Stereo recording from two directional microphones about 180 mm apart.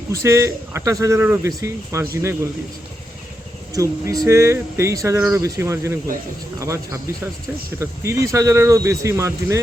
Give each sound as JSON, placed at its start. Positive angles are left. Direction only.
{"t": 0.1, "sound": "speech", "side_deg": -15}
{"t": 3.8, "sound": "speech", "side_deg": -20}